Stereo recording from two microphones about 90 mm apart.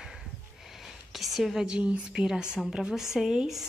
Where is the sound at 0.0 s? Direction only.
5° right (ahead or behind).